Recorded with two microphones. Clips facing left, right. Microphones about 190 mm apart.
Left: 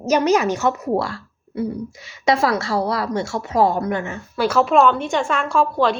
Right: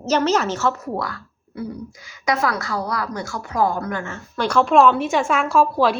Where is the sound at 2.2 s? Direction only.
25° left (ahead or behind).